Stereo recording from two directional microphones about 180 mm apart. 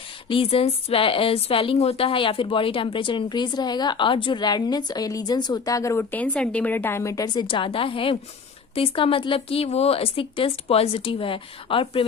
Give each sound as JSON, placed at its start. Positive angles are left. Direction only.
{"t": 0.3, "sound": "a woman's voice", "side_deg": 30}